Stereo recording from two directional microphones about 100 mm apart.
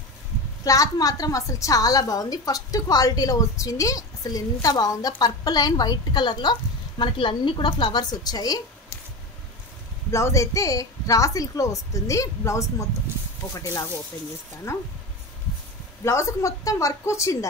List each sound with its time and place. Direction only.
0.7 s a woman's voice: 35° left (ahead or behind)
10.1 s a woman's voice: 30° left (ahead or behind)
14.7 s speech: 25° left (ahead or behind)
16.0 s a woman's voice: 30° left (ahead or behind)